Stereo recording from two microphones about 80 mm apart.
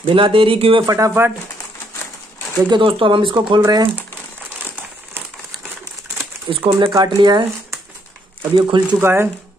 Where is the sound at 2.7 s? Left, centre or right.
Right.